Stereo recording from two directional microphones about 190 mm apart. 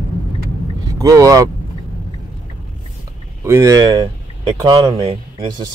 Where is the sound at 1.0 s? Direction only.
20° right (ahead or behind).